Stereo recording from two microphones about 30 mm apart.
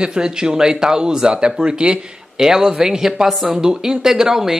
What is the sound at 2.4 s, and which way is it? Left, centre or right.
Speech, right.